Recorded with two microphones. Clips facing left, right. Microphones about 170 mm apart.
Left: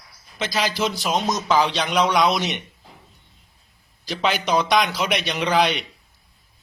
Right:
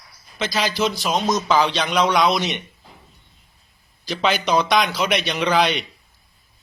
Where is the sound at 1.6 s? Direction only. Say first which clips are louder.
Right 1 dB; 10° left (ahead or behind).